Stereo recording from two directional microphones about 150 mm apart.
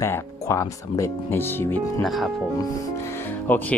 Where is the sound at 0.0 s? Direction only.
15° left (ahead or behind).